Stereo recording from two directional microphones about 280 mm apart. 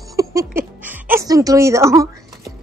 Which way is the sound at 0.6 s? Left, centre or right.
Centre.